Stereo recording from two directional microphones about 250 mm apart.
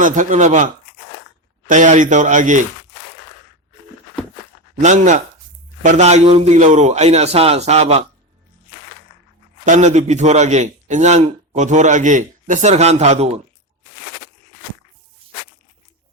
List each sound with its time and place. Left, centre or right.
0.0 s a man's voice: right
4.8 s a man's voice: right
9.6 s a man's voice: right